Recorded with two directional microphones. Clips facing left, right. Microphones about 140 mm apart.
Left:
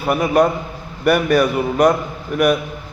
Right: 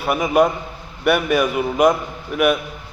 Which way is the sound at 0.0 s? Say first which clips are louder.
Left 1 dB; centre (ahead or behind).